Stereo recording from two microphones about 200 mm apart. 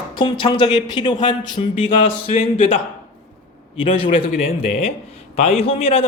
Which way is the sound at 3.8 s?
25° left (ahead or behind).